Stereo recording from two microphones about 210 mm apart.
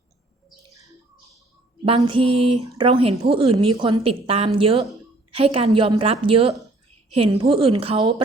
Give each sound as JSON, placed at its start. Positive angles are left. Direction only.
{"t": 1.8, "sound": "a woman's voice", "side_deg": -25}